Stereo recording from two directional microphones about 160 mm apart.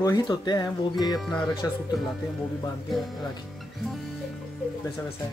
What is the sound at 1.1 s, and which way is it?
Speech, centre (ahead or behind).